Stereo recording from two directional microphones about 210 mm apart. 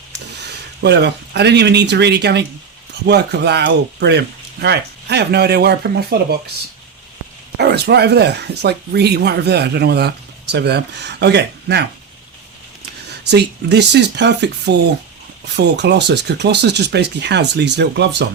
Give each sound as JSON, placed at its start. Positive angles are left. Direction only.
{"t": 0.4, "sound": "speech", "side_deg": -55}
{"t": 7.6, "sound": "speech", "side_deg": -50}
{"t": 13.1, "sound": "speech", "side_deg": -55}